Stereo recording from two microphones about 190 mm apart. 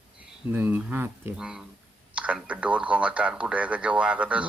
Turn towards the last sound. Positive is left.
turn(degrees=-5)  # may be behind; listen again after turning